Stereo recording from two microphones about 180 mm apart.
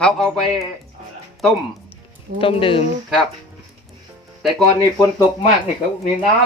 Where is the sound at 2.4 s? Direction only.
30° left (ahead or behind).